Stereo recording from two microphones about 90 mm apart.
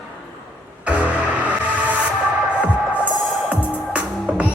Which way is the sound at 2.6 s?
15° right (ahead or behind).